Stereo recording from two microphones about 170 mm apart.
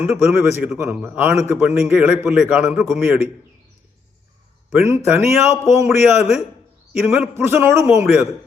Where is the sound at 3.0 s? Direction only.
15° right (ahead or behind).